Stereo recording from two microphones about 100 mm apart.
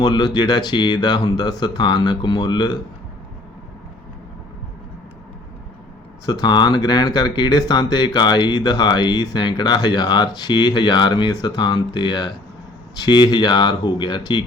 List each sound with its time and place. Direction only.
0.0 s speech: 45° left (ahead or behind)
6.2 s speech: 45° left (ahead or behind)